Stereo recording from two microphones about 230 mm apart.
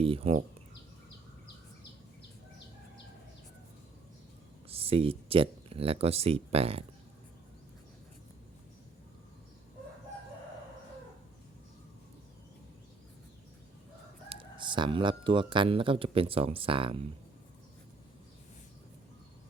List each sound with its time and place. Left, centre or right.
0.0 s speech: right
4.7 s speech: right
14.3 s speech: right